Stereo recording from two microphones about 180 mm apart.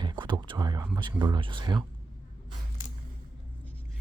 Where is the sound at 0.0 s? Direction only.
25° right (ahead or behind).